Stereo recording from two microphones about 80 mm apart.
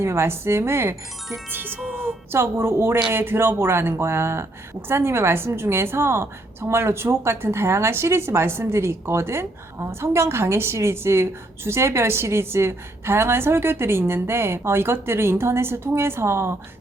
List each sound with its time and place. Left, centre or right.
0.0 s a woman's voice: right
1.5 s chime: right
2.3 s a woman's voice: right